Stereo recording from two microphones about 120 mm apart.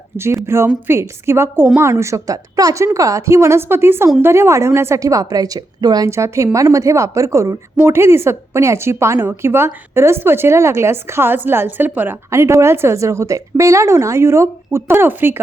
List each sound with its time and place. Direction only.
0.2 s a woman's voice: 20° right (ahead or behind)